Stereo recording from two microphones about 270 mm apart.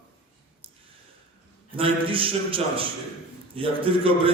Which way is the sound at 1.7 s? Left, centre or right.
Centre.